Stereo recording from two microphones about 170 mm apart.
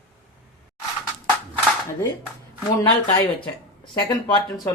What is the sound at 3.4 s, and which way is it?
Speech, 30° left (ahead or behind).